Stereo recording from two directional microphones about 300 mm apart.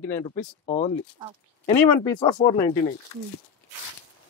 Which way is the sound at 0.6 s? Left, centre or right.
Left.